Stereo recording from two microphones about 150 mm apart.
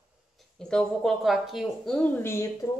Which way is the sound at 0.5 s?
5° left (ahead or behind).